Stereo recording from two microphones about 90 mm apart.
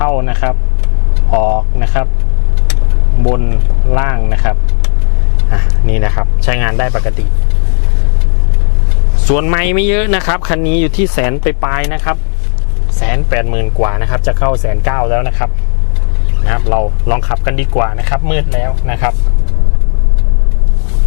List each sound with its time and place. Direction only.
0.0 s speech: 20° left (ahead or behind)
3.2 s speech: 20° left (ahead or behind)
9.2 s speech: 15° left (ahead or behind)
16.5 s speech: 20° left (ahead or behind)